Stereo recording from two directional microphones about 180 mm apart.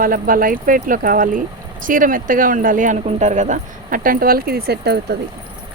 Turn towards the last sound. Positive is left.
turn(degrees=-65)  # may be behind; listen again after turning